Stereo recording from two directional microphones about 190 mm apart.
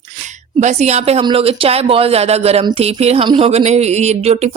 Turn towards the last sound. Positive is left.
turn(degrees=-35)  # may be behind; listen again after turning